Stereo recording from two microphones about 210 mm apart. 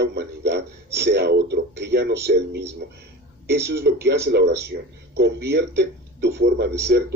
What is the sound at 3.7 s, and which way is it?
Speech, 50° right (ahead or behind).